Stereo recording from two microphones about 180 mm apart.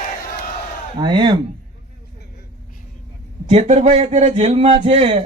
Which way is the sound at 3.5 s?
40° right (ahead or behind).